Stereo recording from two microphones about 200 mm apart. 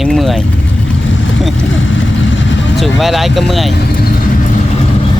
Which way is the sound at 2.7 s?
Centre (ahead or behind).